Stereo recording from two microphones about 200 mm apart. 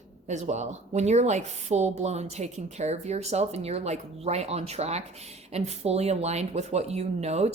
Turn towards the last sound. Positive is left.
turn(degrees=-35)  # may be behind; listen again after turning